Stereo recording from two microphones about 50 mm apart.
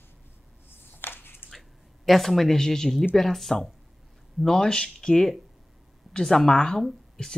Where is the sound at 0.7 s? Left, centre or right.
Left.